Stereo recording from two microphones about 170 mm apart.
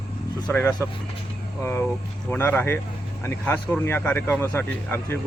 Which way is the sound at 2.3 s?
10° left (ahead or behind).